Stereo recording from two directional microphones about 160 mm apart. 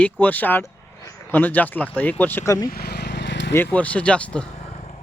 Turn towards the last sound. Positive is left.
turn(degrees=40)  # may be behind; listen again after turning